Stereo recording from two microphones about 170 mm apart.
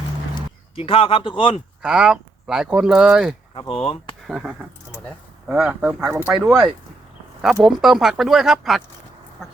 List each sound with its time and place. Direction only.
0.3 s speech: 30° left (ahead or behind)
1.8 s speech: 5° right (ahead or behind)
3.5 s speech: 30° left (ahead or behind)
4.3 s speech: 5° right (ahead or behind)